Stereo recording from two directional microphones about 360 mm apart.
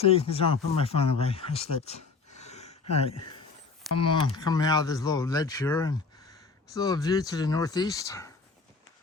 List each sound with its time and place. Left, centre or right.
0.0 s speech: centre
2.4 s a sound: centre
4.0 s speech: centre